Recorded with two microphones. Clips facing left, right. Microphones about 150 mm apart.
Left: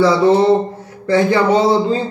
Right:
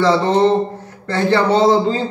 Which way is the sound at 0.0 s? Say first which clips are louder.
Left 2 dB; 10° left (ahead or behind).